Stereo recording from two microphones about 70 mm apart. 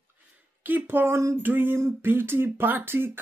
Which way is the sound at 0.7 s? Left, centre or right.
Right.